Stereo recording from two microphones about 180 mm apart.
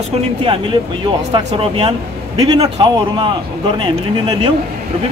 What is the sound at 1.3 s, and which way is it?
Speech, 25° right (ahead or behind).